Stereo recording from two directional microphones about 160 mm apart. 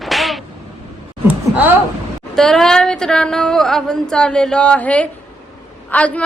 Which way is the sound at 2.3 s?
5° left (ahead or behind).